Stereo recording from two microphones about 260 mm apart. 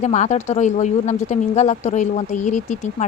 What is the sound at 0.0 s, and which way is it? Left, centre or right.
Speech, left.